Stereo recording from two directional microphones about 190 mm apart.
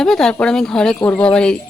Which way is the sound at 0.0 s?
Centre (ahead or behind).